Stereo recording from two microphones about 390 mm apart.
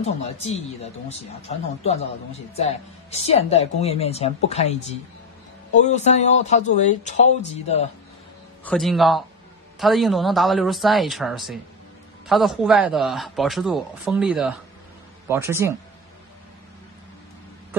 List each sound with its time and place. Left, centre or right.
0.0 s speech: centre
8.6 s a man's voice: centre